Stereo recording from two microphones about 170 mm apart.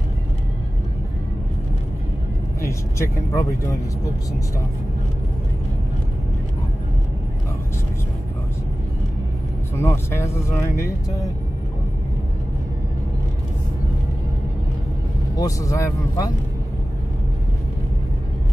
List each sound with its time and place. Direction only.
2.6 s speech: 15° left (ahead or behind)
9.8 s speech: 15° left (ahead or behind)
15.3 s speech: 20° left (ahead or behind)